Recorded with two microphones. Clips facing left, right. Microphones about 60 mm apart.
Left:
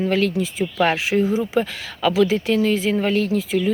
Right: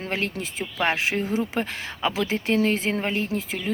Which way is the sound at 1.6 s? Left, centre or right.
Right.